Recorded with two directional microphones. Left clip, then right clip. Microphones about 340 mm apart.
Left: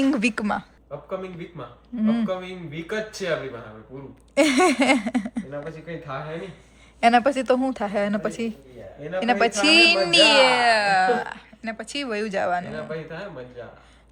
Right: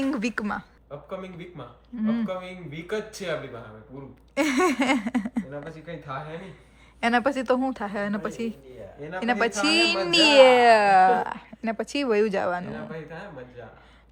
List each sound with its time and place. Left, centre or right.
0.0 s speech: centre
4.4 s speech: centre
7.0 s speech: centre
12.7 s speech: centre